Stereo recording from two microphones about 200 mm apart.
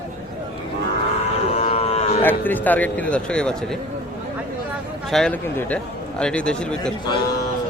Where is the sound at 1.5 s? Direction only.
30° left (ahead or behind).